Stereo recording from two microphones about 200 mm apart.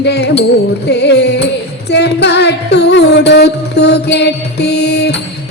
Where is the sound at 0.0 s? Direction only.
55° left (ahead or behind).